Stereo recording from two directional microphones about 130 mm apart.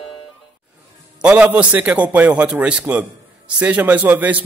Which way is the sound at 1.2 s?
10° right (ahead or behind).